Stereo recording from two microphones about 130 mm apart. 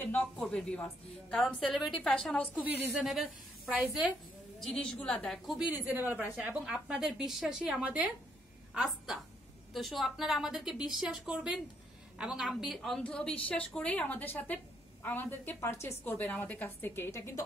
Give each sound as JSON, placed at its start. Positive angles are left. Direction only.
{"t": 0.0, "sound": "a woman's voice", "side_deg": 10}
{"t": 5.9, "sound": "a woman's voice", "side_deg": -10}